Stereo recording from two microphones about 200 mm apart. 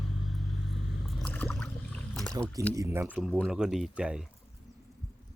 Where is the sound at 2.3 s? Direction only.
15° right (ahead or behind).